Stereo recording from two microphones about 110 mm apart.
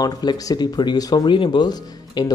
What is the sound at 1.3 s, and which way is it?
Speech, 45° left (ahead or behind).